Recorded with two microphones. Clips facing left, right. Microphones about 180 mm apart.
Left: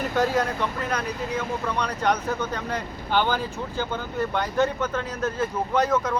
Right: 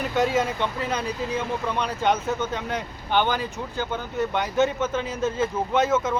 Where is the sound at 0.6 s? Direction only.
25° right (ahead or behind).